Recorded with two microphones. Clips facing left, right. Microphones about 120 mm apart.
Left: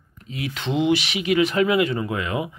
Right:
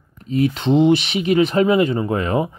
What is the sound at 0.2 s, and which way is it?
Speech, 35° right (ahead or behind).